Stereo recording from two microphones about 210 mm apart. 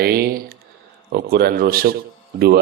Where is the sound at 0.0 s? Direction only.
45° right (ahead or behind).